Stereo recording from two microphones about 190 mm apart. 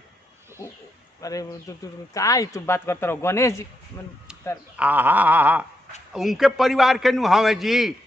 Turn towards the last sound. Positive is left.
turn(degrees=0)  # may be behind; listen again after turning